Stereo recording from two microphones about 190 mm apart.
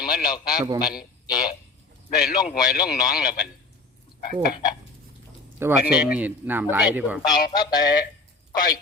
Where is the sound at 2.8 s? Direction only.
5° right (ahead or behind).